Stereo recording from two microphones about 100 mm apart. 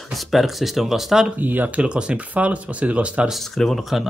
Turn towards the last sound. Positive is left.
turn(degrees=0)  # may be behind; listen again after turning